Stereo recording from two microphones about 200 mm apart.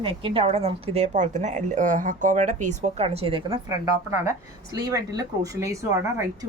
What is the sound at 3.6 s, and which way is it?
Speech, 15° right (ahead or behind).